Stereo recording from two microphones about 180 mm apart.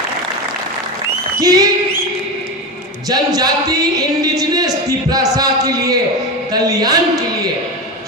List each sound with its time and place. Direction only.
1.4 s speech: 20° right (ahead or behind)
3.1 s speech: 20° right (ahead or behind)